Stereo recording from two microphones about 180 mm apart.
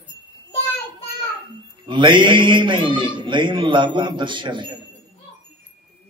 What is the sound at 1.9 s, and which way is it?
Speech, 25° right (ahead or behind).